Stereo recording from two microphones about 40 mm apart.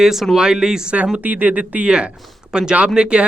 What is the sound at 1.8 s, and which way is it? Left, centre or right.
Speech, right.